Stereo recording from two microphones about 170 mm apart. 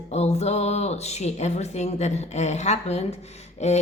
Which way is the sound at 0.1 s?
40° left (ahead or behind).